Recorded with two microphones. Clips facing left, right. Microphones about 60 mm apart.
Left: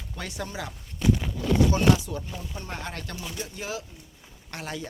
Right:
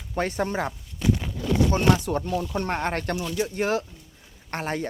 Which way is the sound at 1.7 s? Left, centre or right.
Right.